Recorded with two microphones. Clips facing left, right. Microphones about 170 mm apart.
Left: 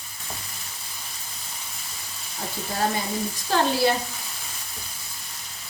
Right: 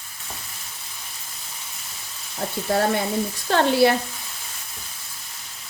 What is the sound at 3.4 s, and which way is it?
Speech, 65° right (ahead or behind).